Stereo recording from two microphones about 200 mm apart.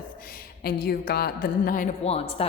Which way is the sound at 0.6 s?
50° left (ahead or behind).